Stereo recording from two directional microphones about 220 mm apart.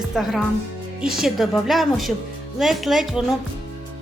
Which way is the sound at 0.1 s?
Centre (ahead or behind).